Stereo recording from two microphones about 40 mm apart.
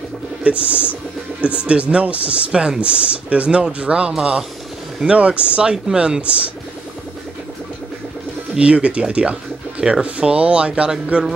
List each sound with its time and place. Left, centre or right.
0.4 s music: right
1.4 s speech: right
8.5 s speech: right
11.1 s music: right